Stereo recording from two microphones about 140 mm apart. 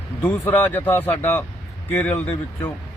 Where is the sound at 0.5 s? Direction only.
15° left (ahead or behind).